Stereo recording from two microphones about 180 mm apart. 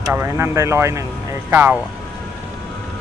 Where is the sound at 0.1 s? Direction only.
15° right (ahead or behind).